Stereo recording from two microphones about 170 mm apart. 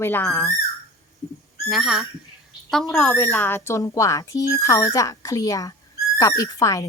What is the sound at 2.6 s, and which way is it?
Speech, centre (ahead or behind).